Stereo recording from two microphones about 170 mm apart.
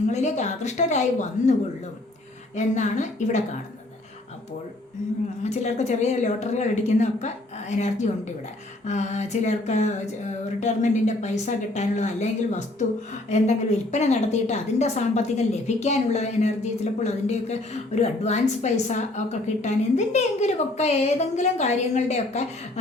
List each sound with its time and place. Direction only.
0.1 s speech: 40° left (ahead or behind)
2.6 s speech: 45° left (ahead or behind)
5.4 s a woman's voice: 40° left (ahead or behind)